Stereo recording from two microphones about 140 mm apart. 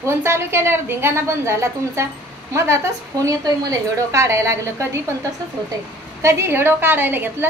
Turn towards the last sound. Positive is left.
turn(degrees=-15)  # may be behind; listen again after turning